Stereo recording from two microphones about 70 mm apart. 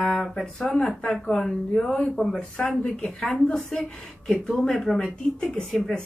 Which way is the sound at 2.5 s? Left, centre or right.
Centre.